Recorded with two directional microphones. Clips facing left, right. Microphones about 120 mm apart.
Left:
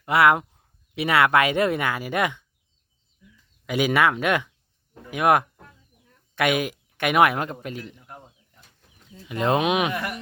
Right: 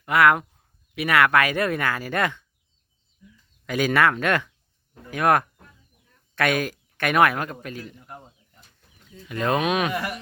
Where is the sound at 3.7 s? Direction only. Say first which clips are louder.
Even; 15° left (ahead or behind).